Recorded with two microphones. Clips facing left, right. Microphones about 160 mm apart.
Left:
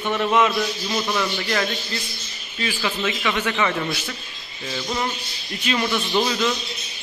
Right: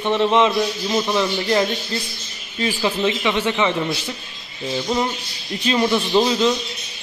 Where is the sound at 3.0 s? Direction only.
25° right (ahead or behind).